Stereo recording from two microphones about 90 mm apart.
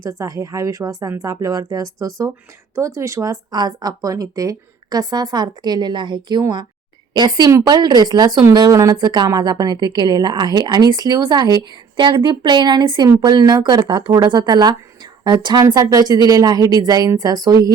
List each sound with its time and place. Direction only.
0.0 s a woman's voice: 40° right (ahead or behind)
8.7 s a woman's voice: 35° right (ahead or behind)
9.0 s a woman's voice: 55° right (ahead or behind)
15.6 s speech: 40° right (ahead or behind)